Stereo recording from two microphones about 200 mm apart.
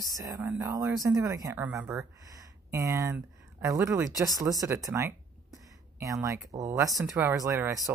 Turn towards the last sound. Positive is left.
turn(degrees=-15)  # may be behind; listen again after turning